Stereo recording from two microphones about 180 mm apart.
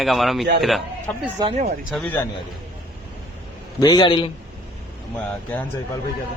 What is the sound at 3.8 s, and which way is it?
Speech, 20° left (ahead or behind).